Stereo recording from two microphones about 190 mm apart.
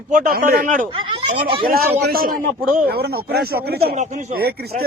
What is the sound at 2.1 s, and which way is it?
A man's voice, 50° right (ahead or behind).